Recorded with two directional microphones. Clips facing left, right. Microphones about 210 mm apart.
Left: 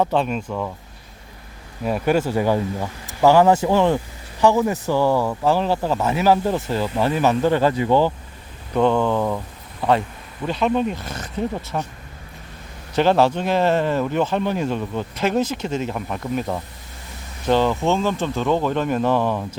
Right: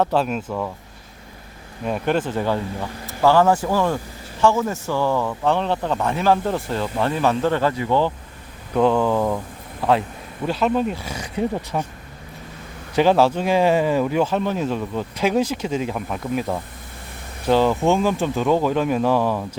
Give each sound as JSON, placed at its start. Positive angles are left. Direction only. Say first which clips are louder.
{"t": 0.0, "sound": "speech", "louder": "even", "side_deg": 0}
{"t": 1.8, "sound": "speech", "louder": "left 2 dB", "side_deg": 5}
{"t": 7.6, "sound": "speech", "louder": "left 2 dB", "side_deg": 15}
{"t": 8.7, "sound": "speech", "louder": "even", "side_deg": 0}
{"t": 10.4, "sound": "speech", "louder": "even", "side_deg": -5}
{"t": 13.0, "sound": "speech", "louder": "right 1 dB", "side_deg": -5}